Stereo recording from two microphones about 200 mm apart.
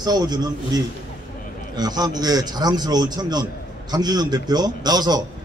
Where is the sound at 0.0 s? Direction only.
20° right (ahead or behind).